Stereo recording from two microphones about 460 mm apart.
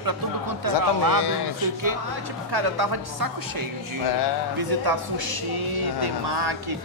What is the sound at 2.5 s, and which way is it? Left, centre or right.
Speech, right.